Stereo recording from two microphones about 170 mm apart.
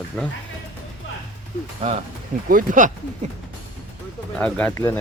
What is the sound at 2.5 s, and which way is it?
Speech, 50° right (ahead or behind).